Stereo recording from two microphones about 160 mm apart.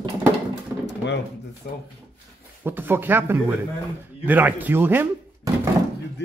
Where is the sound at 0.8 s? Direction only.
90° left.